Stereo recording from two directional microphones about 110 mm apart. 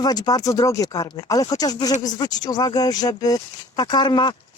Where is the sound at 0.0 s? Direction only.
35° left (ahead or behind).